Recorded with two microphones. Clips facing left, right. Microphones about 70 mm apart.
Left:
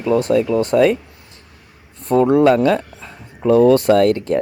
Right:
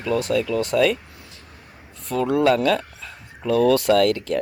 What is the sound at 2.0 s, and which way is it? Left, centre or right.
Speech, left.